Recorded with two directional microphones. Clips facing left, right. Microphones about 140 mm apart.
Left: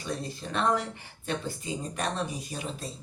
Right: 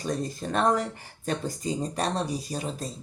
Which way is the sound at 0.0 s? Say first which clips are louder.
Right 5 dB; 40° right (ahead or behind).